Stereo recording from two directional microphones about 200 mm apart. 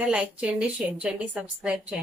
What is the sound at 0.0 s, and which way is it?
A woman's voice, 5° right (ahead or behind).